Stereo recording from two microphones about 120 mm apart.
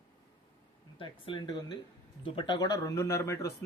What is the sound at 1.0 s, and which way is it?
Speech, 45° left (ahead or behind).